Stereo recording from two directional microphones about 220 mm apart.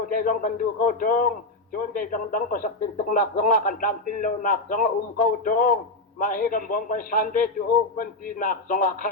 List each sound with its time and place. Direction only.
0.1 s speech: 40° left (ahead or behind)